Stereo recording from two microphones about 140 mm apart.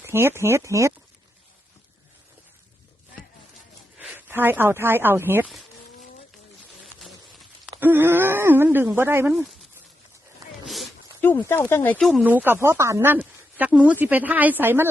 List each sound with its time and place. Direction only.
0.0 s speech: 15° right (ahead or behind)
3.9 s speech: 10° right (ahead or behind)
7.8 s speech: 15° right (ahead or behind)
11.2 s speech: 15° left (ahead or behind)
12.2 s speech: 10° right (ahead or behind)